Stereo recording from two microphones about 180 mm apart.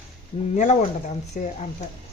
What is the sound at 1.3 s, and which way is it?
Speech, 40° left (ahead or behind).